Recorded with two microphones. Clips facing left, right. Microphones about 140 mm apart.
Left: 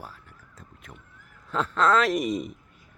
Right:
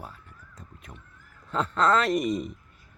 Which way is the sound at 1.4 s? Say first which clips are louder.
Even; centre (ahead or behind).